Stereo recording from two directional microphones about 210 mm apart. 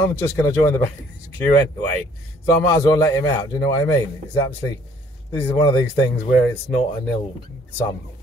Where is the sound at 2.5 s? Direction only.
15° left (ahead or behind).